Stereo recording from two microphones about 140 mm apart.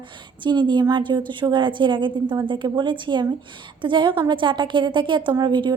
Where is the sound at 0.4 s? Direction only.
35° right (ahead or behind).